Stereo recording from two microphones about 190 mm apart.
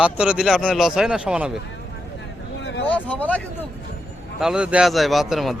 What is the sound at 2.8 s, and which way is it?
Speech, 5° left (ahead or behind).